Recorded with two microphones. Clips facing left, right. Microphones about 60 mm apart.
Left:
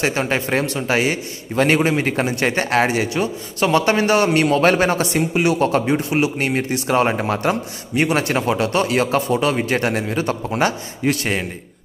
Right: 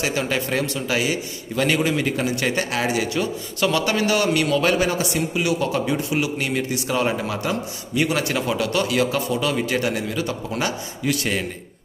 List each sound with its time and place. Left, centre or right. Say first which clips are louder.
0.0 s a man's voice: left 3 dB; left